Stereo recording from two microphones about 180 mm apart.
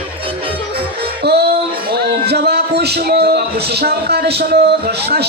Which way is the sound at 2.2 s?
65° right (ahead or behind).